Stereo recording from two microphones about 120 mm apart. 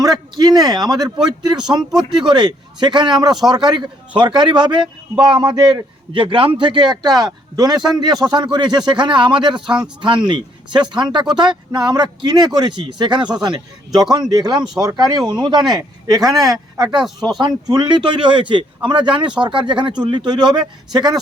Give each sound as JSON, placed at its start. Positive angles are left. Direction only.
{"t": 0.6, "sound": "speech", "side_deg": -35}
{"t": 1.8, "sound": "speech", "side_deg": -5}
{"t": 2.2, "sound": "speech", "side_deg": -35}
{"t": 9.6, "sound": "speech", "side_deg": -5}
{"t": 10.0, "sound": "speech", "side_deg": -40}